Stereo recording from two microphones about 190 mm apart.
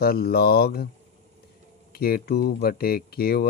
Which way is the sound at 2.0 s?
55° left (ahead or behind).